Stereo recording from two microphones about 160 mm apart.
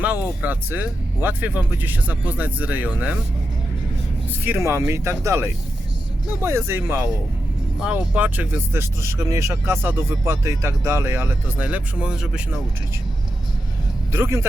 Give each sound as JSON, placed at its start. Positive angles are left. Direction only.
{"t": 0.0, "sound": "speech", "side_deg": -10}
{"t": 4.4, "sound": "speech", "side_deg": -15}
{"t": 14.1, "sound": "speech", "side_deg": -15}